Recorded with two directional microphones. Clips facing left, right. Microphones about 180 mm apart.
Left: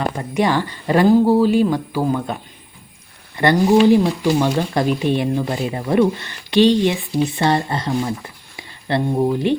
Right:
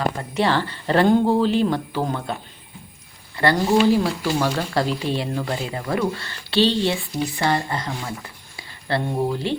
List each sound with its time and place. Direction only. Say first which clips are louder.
0.2 s speech: left 3 dB; 15° left (ahead or behind)